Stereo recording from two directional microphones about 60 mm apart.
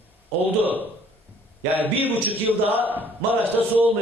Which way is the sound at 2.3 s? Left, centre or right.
Right.